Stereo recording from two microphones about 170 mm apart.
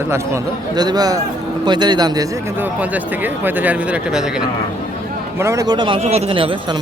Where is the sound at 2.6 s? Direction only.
10° right (ahead or behind).